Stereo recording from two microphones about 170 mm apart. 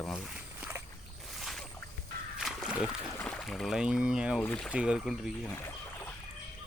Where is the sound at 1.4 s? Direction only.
Centre (ahead or behind).